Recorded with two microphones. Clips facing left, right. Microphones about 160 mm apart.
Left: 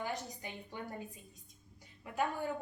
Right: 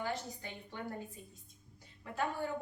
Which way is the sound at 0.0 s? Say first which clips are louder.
Right 1 dB; 15° left (ahead or behind).